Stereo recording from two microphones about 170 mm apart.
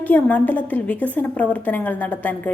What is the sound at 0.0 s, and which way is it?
A woman's voice, 10° left (ahead or behind).